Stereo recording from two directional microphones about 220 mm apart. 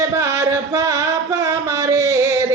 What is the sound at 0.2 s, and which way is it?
Music, 15° right (ahead or behind).